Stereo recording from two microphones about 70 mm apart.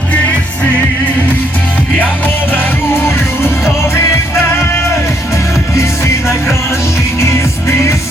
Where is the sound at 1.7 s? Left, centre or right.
Left.